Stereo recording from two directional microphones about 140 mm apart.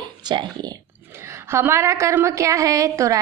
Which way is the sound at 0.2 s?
30° right (ahead or behind).